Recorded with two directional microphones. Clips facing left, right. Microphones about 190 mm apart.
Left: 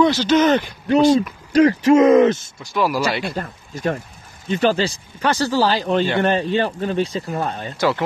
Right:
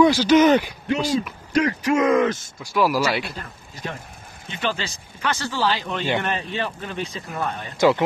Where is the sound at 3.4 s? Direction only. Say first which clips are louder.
Left 7 dB; 50° left (ahead or behind).